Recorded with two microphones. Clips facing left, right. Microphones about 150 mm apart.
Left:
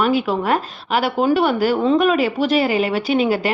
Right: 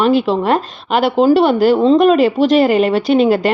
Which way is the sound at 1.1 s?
35° right (ahead or behind).